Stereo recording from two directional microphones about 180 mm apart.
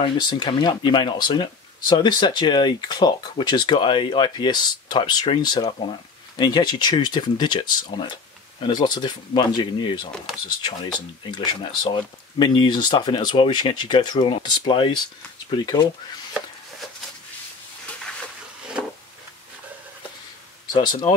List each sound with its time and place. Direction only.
0.0 s speech: 25° left (ahead or behind)